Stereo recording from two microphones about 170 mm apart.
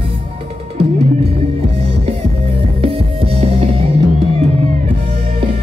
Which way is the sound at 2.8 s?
35° right (ahead or behind).